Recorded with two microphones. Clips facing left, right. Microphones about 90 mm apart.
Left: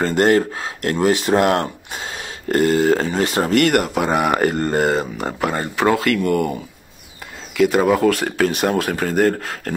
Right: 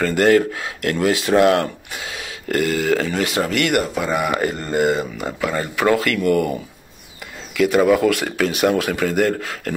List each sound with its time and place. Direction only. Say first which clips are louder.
0.0 s speech: even; 30° left (ahead or behind)
3.8 s speech: left 3 dB; 60° left (ahead or behind); by 6.5 s 35° left (ahead or behind)
7.5 s speech: even; 35° left (ahead or behind)